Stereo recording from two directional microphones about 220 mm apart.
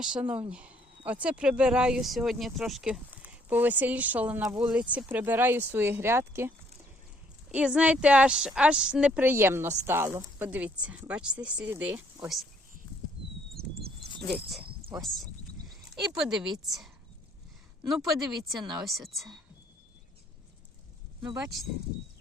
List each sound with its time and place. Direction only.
0.0 s speech: 5° right (ahead or behind)
7.5 s speech: 5° right (ahead or behind)
13.6 s a sound: 45° right (ahead or behind)
14.2 s speech: 45° right (ahead or behind)
14.6 s cricket: 25° right (ahead or behind)
15.0 s speech: centre (ahead or behind)